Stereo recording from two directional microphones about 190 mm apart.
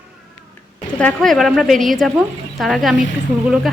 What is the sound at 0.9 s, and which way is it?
Speech, 5° left (ahead or behind).